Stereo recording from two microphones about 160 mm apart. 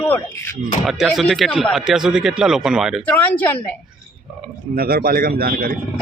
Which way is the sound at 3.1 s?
10° left (ahead or behind).